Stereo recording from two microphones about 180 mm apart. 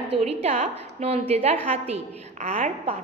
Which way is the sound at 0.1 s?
35° right (ahead or behind).